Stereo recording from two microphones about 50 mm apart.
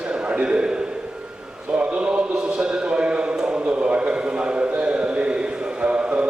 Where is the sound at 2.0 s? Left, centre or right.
Centre.